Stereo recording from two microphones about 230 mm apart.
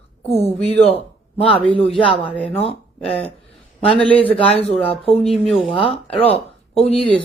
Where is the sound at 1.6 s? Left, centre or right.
Right.